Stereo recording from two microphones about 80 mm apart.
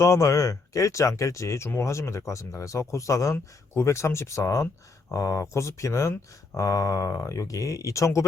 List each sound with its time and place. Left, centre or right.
0.0 s speech: left